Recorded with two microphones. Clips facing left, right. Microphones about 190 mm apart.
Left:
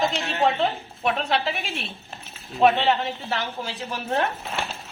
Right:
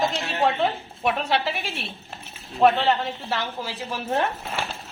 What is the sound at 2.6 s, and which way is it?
A woman's voice, centre (ahead or behind).